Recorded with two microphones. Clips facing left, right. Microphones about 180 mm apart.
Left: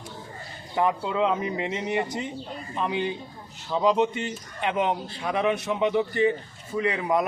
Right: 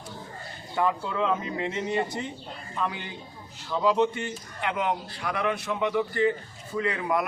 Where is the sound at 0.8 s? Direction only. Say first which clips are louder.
Left 3 dB; 20° left (ahead or behind).